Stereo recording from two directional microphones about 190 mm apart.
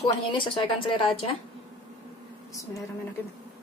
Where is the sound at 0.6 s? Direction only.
25° left (ahead or behind).